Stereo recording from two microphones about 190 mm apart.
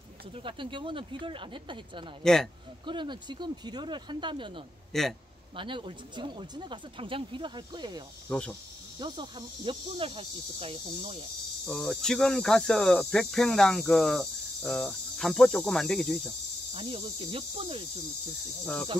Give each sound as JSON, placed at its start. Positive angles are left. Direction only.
{"t": 0.3, "sound": "speech", "side_deg": -25}
{"t": 2.2, "sound": "speech", "side_deg": 0}
{"t": 2.8, "sound": "speech", "side_deg": -25}
{"t": 4.9, "sound": "speech", "side_deg": 0}
{"t": 5.6, "sound": "speech", "side_deg": -25}
{"t": 8.3, "sound": "speech", "side_deg": 5}
{"t": 9.0, "sound": "speech", "side_deg": -25}
{"t": 11.6, "sound": "speech", "side_deg": 5}
{"t": 16.7, "sound": "speech", "side_deg": -30}